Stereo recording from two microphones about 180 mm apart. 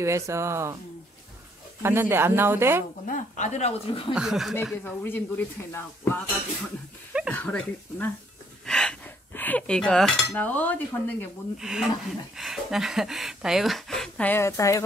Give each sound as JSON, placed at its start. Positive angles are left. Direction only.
{"t": 0.0, "sound": "speech", "side_deg": -15}
{"t": 1.8, "sound": "speech", "side_deg": -15}
{"t": 3.1, "sound": "speech", "side_deg": 40}
{"t": 4.1, "sound": "speech", "side_deg": -5}
{"t": 4.8, "sound": "speech", "side_deg": 10}
{"t": 7.2, "sound": "speech", "side_deg": 5}
{"t": 11.5, "sound": "speech", "side_deg": -5}